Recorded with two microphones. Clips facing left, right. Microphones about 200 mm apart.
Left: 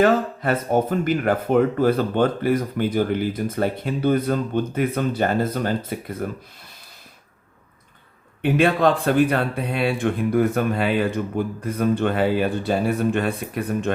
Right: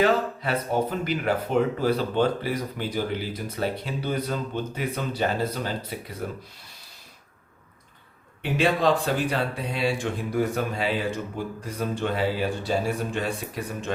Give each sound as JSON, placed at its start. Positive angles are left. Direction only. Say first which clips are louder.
{"t": 0.0, "sound": "speech", "louder": "left 4 dB", "side_deg": 50}
{"t": 8.4, "sound": "speech", "louder": "left 5 dB", "side_deg": 55}